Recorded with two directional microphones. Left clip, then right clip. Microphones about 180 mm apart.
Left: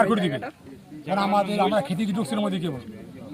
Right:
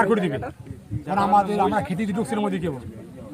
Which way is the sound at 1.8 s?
Centre (ahead or behind).